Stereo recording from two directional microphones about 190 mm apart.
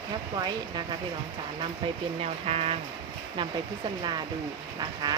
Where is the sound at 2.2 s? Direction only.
30° right (ahead or behind).